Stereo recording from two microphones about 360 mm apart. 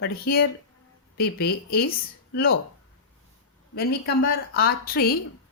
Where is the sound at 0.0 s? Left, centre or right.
Left.